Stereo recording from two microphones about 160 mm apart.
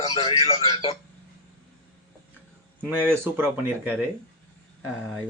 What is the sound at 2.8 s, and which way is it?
Speech, 10° right (ahead or behind).